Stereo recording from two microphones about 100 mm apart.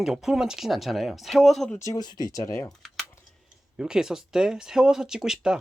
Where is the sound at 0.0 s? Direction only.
5° right (ahead or behind).